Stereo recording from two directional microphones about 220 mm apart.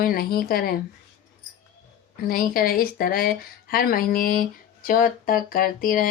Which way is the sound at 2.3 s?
40° left (ahead or behind).